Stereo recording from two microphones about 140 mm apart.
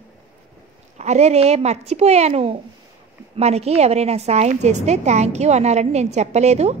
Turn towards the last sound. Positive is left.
turn(degrees=-50)  # may be behind; listen again after turning